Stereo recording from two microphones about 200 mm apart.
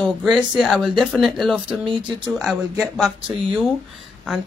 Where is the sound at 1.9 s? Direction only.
25° right (ahead or behind).